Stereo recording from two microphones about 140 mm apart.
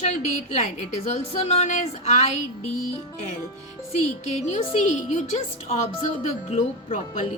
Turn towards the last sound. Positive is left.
turn(degrees=60)  # may be behind; listen again after turning